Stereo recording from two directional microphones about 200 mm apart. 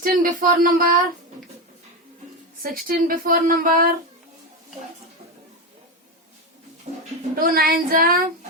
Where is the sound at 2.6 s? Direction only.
45° right (ahead or behind).